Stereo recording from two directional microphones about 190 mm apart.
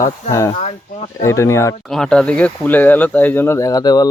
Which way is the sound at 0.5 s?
35° left (ahead or behind).